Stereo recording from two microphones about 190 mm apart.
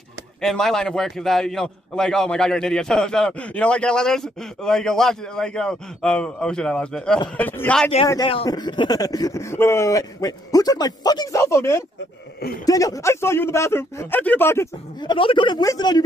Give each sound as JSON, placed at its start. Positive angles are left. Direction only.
{"t": 0.4, "sound": "a man's voice", "side_deg": 0}
{"t": 8.1, "sound": "speech", "side_deg": 25}